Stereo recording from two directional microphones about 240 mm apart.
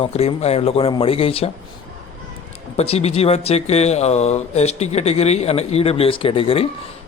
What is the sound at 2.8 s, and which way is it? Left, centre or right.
Speech, left.